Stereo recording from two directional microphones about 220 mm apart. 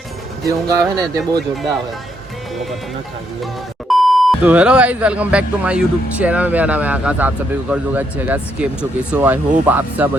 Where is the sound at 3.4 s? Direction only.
Centre (ahead or behind).